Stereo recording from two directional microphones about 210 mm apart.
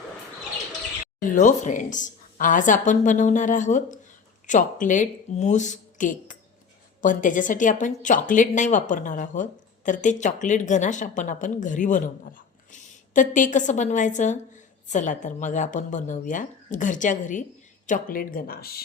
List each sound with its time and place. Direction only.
1.2 s a woman's voice: 35° left (ahead or behind)